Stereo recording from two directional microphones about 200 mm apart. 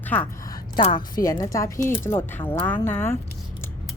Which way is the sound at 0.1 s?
10° left (ahead or behind).